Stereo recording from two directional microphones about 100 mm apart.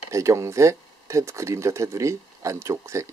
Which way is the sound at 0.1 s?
30° right (ahead or behind).